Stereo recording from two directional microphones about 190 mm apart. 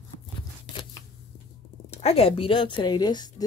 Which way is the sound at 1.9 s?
30° left (ahead or behind).